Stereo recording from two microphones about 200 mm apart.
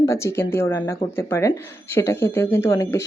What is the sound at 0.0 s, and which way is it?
Speech, 15° left (ahead or behind).